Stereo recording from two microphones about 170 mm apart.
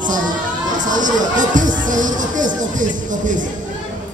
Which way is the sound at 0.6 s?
50° right (ahead or behind).